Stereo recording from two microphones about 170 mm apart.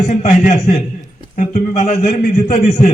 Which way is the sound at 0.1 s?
45° left (ahead or behind).